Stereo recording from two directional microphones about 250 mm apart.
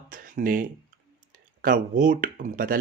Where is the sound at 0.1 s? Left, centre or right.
Right.